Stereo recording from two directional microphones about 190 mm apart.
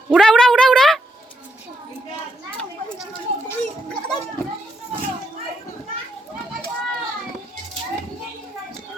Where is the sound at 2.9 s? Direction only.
15° left (ahead or behind).